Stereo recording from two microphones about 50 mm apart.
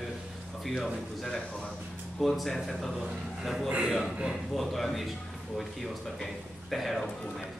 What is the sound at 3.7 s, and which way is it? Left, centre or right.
Speech, right.